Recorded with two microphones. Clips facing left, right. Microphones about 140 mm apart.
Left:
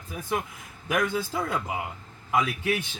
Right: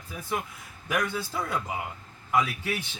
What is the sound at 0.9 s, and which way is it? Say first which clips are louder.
A man's voice: left 3 dB; 20° left (ahead or behind).